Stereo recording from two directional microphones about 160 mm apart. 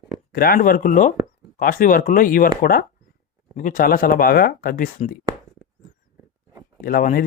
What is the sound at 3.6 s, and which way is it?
Speech, 60° left (ahead or behind).